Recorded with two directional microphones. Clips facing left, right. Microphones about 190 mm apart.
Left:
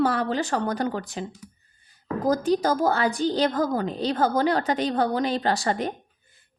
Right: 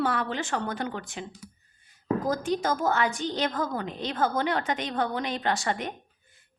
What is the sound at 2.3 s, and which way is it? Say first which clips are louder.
Speech: left 8 dB; 35° left (ahead or behind).